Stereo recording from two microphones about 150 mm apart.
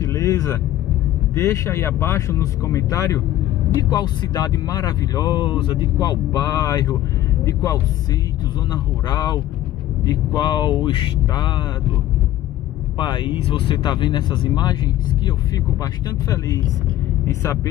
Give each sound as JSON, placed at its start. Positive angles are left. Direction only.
{"t": 0.0, "sound": "vehicle", "side_deg": 20}
{"t": 1.3, "sound": "speech", "side_deg": 20}
{"t": 8.7, "sound": "speech", "side_deg": 25}
{"t": 13.0, "sound": "speech", "side_deg": 30}